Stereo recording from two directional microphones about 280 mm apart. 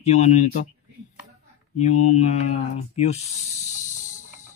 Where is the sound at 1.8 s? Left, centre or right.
Left.